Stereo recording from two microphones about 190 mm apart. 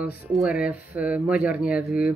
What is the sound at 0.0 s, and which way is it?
Speech, 5° right (ahead or behind).